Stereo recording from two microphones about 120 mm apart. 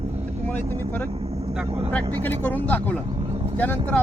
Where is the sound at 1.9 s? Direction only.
15° left (ahead or behind).